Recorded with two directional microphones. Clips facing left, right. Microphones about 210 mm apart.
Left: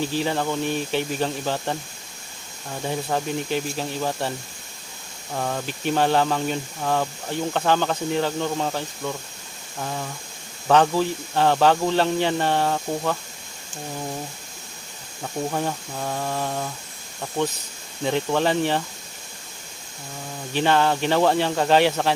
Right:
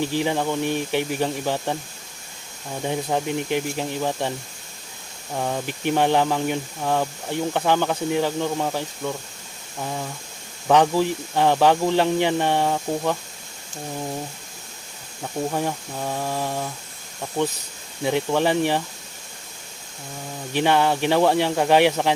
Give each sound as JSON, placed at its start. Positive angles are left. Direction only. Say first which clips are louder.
{"t": 0.0, "sound": "speech", "louder": "right 1 dB", "side_deg": -15}
{"t": 5.3, "sound": "speech", "louder": "right 1 dB", "side_deg": -10}
{"t": 15.2, "sound": "speech", "louder": "right 1 dB", "side_deg": -5}
{"t": 20.5, "sound": "speech", "louder": "right 1 dB", "side_deg": -15}